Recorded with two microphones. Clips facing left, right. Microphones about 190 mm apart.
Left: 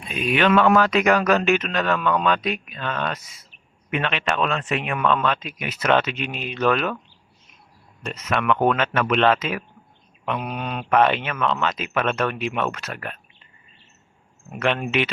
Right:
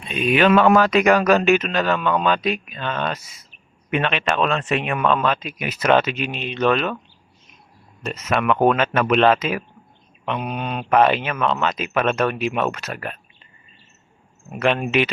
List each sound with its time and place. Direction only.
0.1 s speech: centre (ahead or behind)
3.9 s speech: 20° right (ahead or behind)
5.0 s speech: 10° right (ahead or behind)
8.4 s speech: 10° right (ahead or behind)
11.4 s speech: 20° right (ahead or behind)
14.8 s speech: 15° right (ahead or behind)